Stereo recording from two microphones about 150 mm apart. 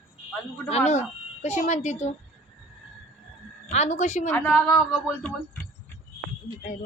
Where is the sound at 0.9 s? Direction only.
50° left (ahead or behind).